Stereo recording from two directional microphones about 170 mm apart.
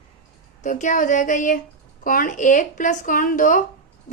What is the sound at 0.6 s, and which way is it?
Speech, 45° left (ahead or behind).